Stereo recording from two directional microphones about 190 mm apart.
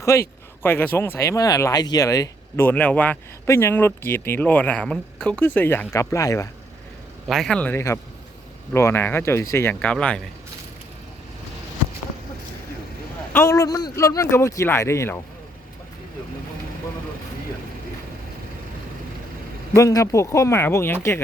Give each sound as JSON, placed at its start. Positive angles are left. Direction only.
{"t": 0.0, "sound": "speech", "side_deg": 15}
{"t": 7.3, "sound": "speech", "side_deg": 0}
{"t": 13.3, "sound": "speech", "side_deg": 15}
{"t": 19.7, "sound": "speech", "side_deg": 15}